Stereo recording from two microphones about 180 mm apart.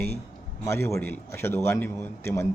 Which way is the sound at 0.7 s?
15° left (ahead or behind).